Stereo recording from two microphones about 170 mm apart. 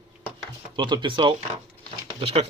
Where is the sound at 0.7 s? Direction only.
25° right (ahead or behind).